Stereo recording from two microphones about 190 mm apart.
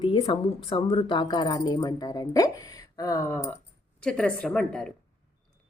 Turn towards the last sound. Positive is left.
turn(degrees=5)  # may be behind; listen again after turning